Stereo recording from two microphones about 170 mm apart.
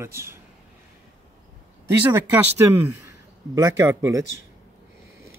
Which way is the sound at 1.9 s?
10° right (ahead or behind).